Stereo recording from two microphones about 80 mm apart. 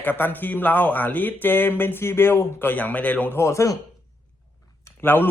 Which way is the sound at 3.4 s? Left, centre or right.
Left.